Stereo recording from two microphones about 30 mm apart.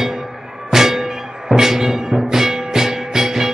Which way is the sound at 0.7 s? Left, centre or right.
Centre.